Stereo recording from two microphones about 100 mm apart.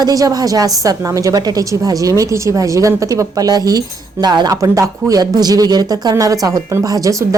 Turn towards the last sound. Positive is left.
turn(degrees=-35)  # may be behind; listen again after turning